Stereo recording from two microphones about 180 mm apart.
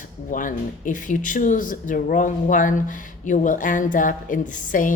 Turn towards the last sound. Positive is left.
turn(degrees=50)  # may be behind; listen again after turning